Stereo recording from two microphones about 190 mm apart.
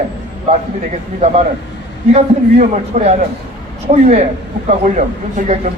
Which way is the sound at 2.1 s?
35° right (ahead or behind).